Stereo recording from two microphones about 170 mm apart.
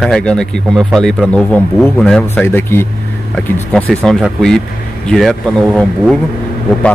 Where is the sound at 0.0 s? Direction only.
5° left (ahead or behind).